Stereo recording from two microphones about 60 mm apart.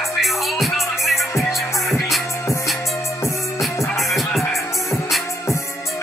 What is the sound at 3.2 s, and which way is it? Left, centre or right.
Music, left.